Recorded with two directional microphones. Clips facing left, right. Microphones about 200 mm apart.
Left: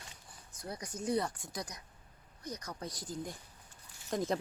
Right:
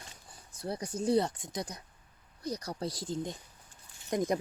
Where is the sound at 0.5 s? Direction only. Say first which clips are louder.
Right 7 dB; 30° right (ahead or behind).